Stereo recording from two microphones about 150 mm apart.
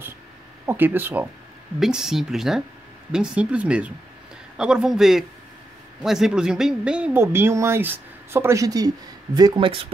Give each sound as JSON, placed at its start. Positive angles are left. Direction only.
{"t": 0.7, "sound": "speech", "side_deg": -15}